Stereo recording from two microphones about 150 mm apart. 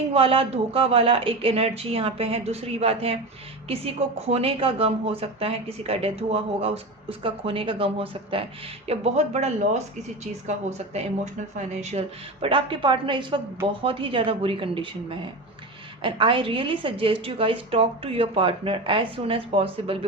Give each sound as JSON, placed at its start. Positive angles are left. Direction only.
{"t": 0.1, "sound": "a woman's voice", "side_deg": -40}